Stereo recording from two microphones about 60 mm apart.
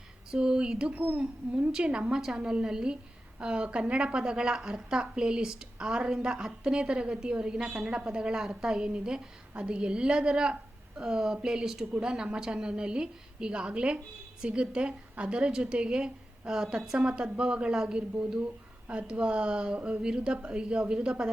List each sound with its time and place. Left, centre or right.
0.3 s a woman's voice: centre